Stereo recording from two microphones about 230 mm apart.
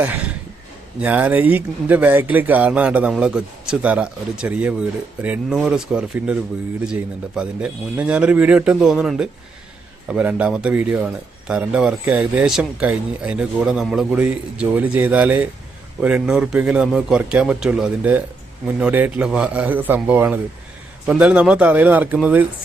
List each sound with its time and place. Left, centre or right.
1.0 s a man's voice: centre